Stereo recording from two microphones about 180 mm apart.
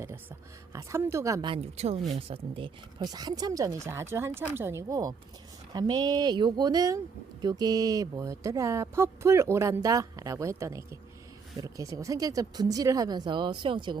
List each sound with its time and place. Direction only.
0.7 s speech: 15° right (ahead or behind)